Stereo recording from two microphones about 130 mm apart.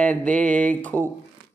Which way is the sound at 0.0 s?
10° left (ahead or behind).